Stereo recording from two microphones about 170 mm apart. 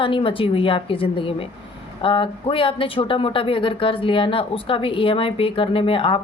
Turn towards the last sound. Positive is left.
turn(degrees=30)  # may be behind; listen again after turning